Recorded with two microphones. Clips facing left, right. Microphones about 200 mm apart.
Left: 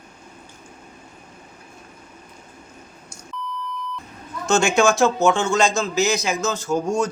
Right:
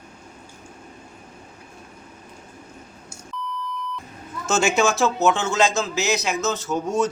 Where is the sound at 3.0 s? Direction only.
Centre (ahead or behind).